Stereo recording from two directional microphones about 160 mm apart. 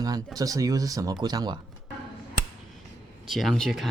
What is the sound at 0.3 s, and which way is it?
Speech, 20° right (ahead or behind).